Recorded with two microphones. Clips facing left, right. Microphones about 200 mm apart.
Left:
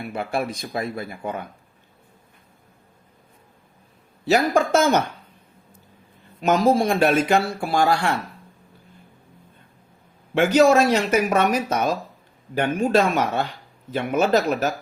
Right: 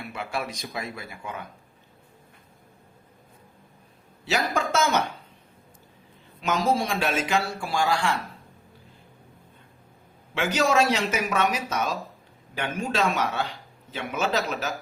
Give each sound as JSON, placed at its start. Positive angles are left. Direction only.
{"t": 0.2, "sound": "speech", "side_deg": 55}
{"t": 4.3, "sound": "speech", "side_deg": 55}
{"t": 6.4, "sound": "speech", "side_deg": 55}
{"t": 10.3, "sound": "speech", "side_deg": 55}